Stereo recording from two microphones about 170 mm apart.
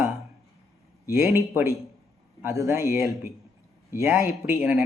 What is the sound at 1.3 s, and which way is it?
Speech, 15° right (ahead or behind).